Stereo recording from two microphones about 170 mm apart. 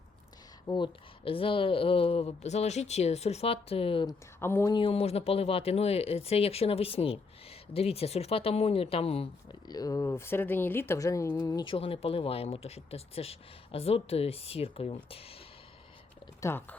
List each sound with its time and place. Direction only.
0.7 s speech: 30° left (ahead or behind)
4.0 s speech: 15° left (ahead or behind)
4.7 s speech: 30° left (ahead or behind)
16.4 s speech: 15° left (ahead or behind)